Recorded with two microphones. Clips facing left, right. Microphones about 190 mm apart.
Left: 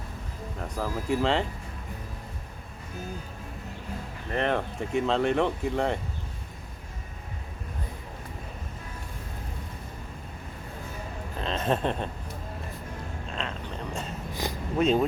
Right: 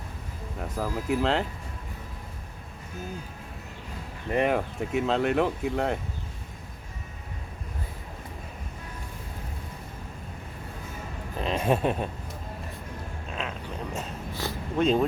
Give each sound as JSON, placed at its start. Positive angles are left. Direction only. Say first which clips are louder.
{"t": 0.6, "sound": "speech", "louder": "right 1 dB", "side_deg": -5}
{"t": 4.3, "sound": "speech", "louder": "right 3 dB", "side_deg": -10}
{"t": 11.3, "sound": "speech", "louder": "right 2 dB", "side_deg": -10}
{"t": 13.3, "sound": "a sound", "louder": "right 1 dB", "side_deg": -5}
{"t": 14.4, "sound": "a sound", "louder": "left 1 dB", "side_deg": 15}
{"t": 14.8, "sound": "speech", "louder": "even", "side_deg": 5}